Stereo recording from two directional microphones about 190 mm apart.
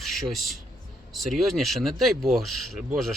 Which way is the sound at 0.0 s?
Centre (ahead or behind).